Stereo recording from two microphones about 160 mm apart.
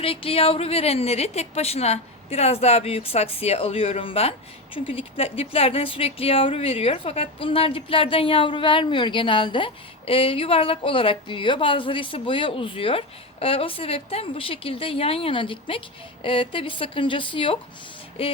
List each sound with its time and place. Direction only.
0.0 s a woman's voice: 35° left (ahead or behind)